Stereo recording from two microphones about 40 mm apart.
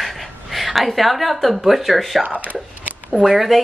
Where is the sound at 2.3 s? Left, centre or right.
Right.